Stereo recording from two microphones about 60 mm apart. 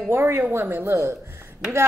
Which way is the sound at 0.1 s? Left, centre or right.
Right.